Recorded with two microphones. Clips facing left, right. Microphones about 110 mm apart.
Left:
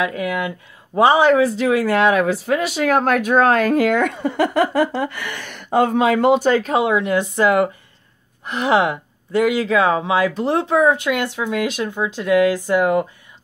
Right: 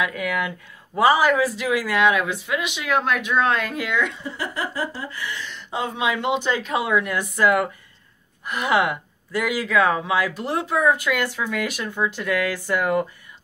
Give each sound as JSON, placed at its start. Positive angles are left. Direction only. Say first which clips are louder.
{"t": 0.0, "sound": "speech", "louder": "left 3 dB", "side_deg": 25}
{"t": 6.7, "sound": "speech", "louder": "left 5 dB", "side_deg": 25}